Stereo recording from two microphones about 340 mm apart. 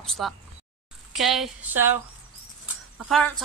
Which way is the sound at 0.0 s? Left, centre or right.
Centre.